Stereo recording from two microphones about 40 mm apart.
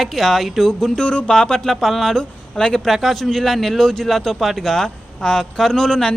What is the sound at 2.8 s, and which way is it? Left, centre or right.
Speech, centre.